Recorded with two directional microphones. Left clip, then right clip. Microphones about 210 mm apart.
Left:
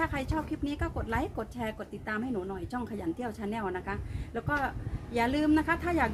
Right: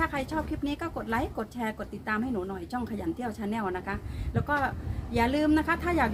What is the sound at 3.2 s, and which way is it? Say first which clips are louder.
A woman's voice: right 2 dB; 5° right (ahead or behind).